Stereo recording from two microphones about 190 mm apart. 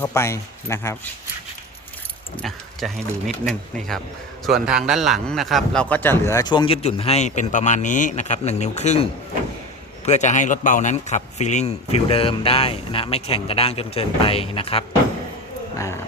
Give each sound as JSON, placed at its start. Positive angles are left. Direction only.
{"t": 0.0, "sound": "speech", "side_deg": 15}
{"t": 2.4, "sound": "speech", "side_deg": 0}
{"t": 4.4, "sound": "speech", "side_deg": 0}
{"t": 10.1, "sound": "speech", "side_deg": 40}